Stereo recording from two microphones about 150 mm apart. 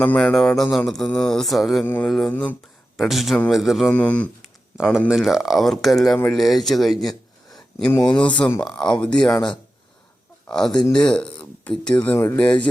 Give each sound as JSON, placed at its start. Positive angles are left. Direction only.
{"t": 0.0, "sound": "speech", "side_deg": 10}
{"t": 1.8, "sound": "speech", "side_deg": 10}
{"t": 3.0, "sound": "speech", "side_deg": 0}
{"t": 4.8, "sound": "speech", "side_deg": -5}
{"t": 7.0, "sound": "a sound", "side_deg": 0}
{"t": 8.0, "sound": "speech", "side_deg": 10}
{"t": 9.3, "sound": "speech", "side_deg": 30}
{"t": 10.4, "sound": "speech", "side_deg": 5}
{"t": 10.7, "sound": "speech", "side_deg": 30}
{"t": 10.9, "sound": "speech", "side_deg": 5}